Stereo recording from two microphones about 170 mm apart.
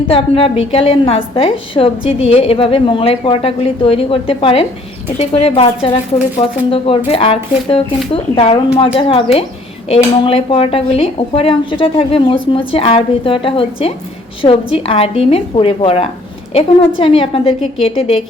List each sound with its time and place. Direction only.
0.1 s a woman's voice: 35° left (ahead or behind)